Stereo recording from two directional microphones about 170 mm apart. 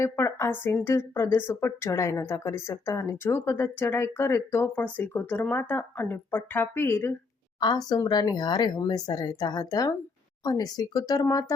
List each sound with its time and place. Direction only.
0.0 s speech: 15° left (ahead or behind)
7.6 s speech: 25° left (ahead or behind)